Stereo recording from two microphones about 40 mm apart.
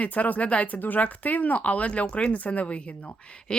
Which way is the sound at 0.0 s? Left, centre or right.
Left.